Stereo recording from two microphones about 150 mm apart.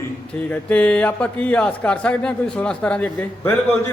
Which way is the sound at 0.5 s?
10° left (ahead or behind).